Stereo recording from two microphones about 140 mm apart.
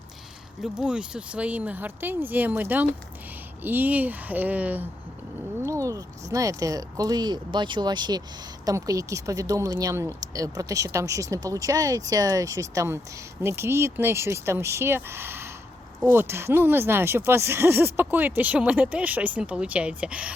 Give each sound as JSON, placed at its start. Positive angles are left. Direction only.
{"t": 0.6, "sound": "speech", "side_deg": -5}
{"t": 5.6, "sound": "speech", "side_deg": -20}